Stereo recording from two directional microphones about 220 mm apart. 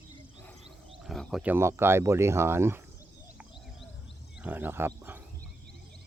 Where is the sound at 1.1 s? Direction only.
Centre (ahead or behind).